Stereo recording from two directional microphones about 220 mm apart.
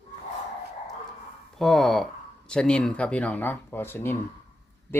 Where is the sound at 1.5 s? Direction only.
Centre (ahead or behind).